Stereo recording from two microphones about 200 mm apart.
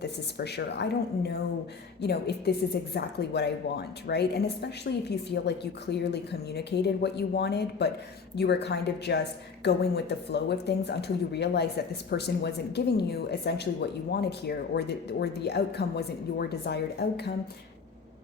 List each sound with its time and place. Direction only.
0.0 s a woman's voice: 55° left (ahead or behind)